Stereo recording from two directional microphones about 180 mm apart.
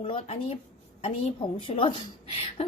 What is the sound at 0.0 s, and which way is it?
A woman's voice, 30° left (ahead or behind).